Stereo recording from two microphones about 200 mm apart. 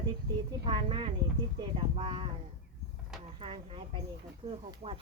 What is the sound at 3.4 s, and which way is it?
Speech, 25° right (ahead or behind).